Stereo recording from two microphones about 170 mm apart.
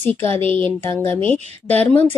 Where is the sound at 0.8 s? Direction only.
15° left (ahead or behind).